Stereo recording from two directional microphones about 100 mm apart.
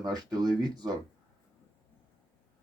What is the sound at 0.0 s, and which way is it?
Speech, 40° right (ahead or behind).